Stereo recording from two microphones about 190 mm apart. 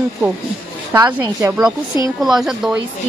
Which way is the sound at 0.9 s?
15° right (ahead or behind).